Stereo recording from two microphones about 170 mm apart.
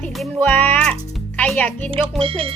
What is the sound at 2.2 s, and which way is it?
Speech, 35° right (ahead or behind).